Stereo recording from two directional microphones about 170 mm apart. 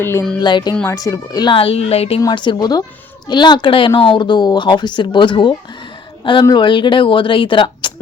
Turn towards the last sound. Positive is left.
turn(degrees=30)  # may be behind; listen again after turning